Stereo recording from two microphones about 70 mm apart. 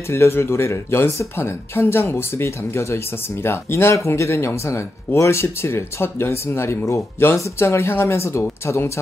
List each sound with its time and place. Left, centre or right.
0.1 s speech: left